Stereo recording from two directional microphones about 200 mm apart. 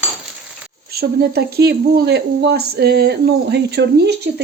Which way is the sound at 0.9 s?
50° right (ahead or behind).